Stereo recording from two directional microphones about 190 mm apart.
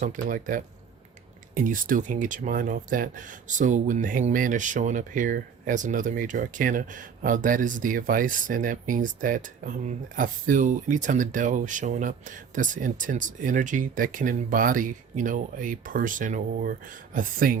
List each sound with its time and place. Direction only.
0.0 s speech: 45° right (ahead or behind)